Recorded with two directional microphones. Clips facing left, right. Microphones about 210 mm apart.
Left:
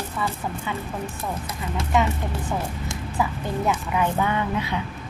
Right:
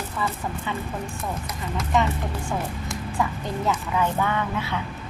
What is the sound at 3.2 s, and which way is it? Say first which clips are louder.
A woman's voice: left 2 dB; 15° left (ahead or behind).